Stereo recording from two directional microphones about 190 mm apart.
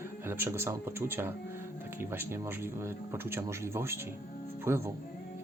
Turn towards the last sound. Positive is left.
turn(degrees=-15)  # may be behind; listen again after turning